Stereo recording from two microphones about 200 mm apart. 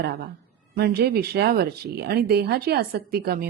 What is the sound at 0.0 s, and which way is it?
A woman's voice, 50° right (ahead or behind).